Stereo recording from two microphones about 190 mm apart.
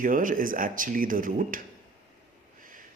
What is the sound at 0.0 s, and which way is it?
A man's voice, 45° right (ahead or behind).